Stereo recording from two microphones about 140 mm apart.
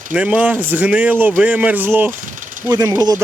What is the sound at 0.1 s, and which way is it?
Speech, 10° right (ahead or behind).